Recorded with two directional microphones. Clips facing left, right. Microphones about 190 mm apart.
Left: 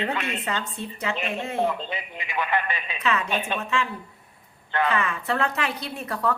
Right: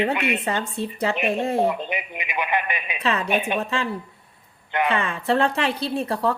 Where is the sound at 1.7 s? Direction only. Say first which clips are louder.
Right 4 dB; 15° right (ahead or behind).